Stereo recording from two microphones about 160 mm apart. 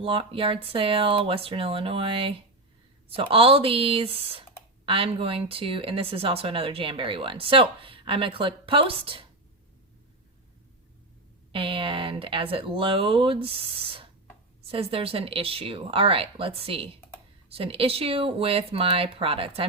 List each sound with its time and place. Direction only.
0.0 s speech: 35° right (ahead or behind)
11.5 s speech: 35° right (ahead or behind)